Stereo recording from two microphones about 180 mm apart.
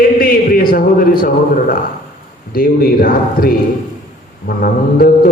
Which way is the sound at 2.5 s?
55° left (ahead or behind).